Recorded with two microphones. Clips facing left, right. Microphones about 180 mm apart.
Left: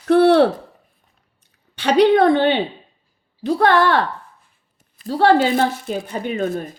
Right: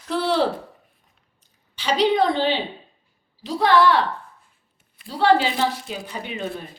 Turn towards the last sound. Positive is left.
turn(degrees=45)  # may be behind; listen again after turning